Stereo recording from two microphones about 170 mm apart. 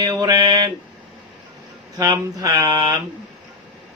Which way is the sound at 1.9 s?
20° right (ahead or behind).